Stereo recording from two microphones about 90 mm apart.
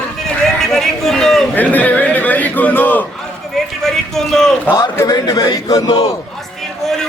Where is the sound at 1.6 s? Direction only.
15° left (ahead or behind).